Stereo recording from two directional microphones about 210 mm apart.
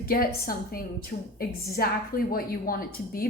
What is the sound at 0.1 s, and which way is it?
Speech, 45° left (ahead or behind).